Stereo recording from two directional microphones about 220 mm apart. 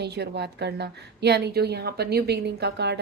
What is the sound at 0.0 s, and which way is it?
Speech, 50° right (ahead or behind).